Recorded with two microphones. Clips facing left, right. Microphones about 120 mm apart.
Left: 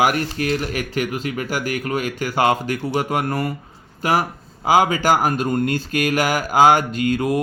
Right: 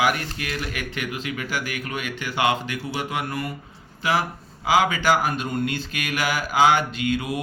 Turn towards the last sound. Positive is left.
turn(degrees=45)  # may be behind; listen again after turning